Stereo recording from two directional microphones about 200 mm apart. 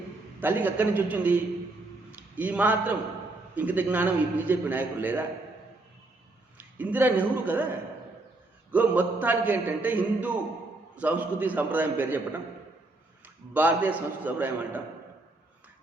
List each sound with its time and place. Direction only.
0.3 s a man's voice: 10° right (ahead or behind)
6.6 s a man's voice: 10° right (ahead or behind)
8.7 s a man's voice: 10° right (ahead or behind)
13.2 s a man's voice: 10° right (ahead or behind)